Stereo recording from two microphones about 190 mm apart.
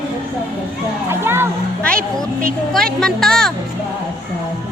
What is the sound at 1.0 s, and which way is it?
Music, 10° right (ahead or behind).